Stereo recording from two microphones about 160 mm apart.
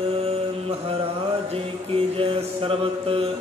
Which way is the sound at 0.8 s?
35° right (ahead or behind).